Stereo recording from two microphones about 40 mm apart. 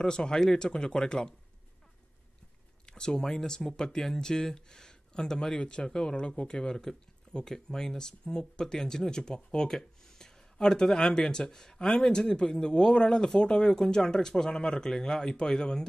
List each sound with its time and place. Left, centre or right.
0.0 s speech: centre
2.9 s speech: centre